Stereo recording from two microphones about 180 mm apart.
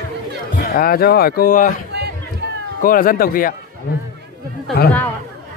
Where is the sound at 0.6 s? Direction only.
55° left (ahead or behind).